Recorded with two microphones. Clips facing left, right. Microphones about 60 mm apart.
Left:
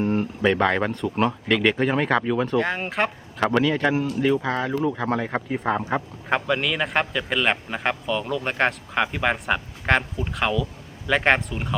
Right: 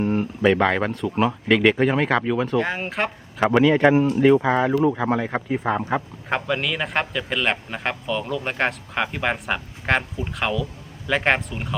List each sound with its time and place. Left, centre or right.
0.0 s speech: centre
3.4 s speech: centre
4.2 s speech: centre